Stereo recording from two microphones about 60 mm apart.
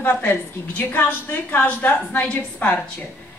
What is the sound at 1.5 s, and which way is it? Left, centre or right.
A woman's voice, left.